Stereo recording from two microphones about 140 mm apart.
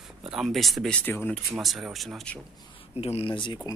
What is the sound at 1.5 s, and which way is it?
Speech, centre (ahead or behind).